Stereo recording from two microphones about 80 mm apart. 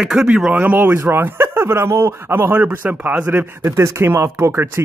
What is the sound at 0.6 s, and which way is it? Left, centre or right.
Speech, right.